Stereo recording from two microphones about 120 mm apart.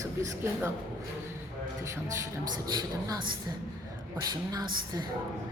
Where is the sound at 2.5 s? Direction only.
35° right (ahead or behind).